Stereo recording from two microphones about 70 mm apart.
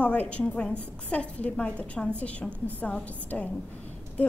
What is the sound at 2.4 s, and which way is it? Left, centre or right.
Speech, right.